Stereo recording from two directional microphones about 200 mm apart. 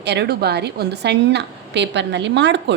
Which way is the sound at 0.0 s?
60° right (ahead or behind).